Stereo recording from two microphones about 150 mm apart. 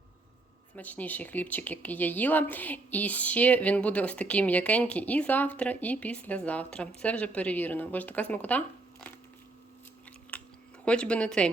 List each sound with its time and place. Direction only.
0.8 s speech: 10° left (ahead or behind)
10.3 s a sound: 10° left (ahead or behind)
10.8 s speech: 5° left (ahead or behind)